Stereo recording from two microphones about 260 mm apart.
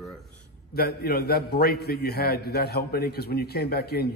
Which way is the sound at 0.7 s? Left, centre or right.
Left.